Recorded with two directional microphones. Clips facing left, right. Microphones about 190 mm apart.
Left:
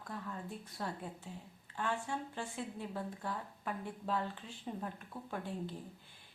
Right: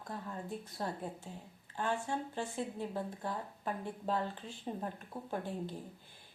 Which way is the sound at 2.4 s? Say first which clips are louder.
Right 4 dB; 25° right (ahead or behind).